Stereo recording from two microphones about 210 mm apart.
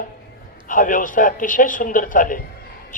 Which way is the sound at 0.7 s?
40° left (ahead or behind).